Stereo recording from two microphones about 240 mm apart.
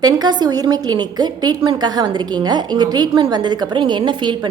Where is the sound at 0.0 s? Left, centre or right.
Centre.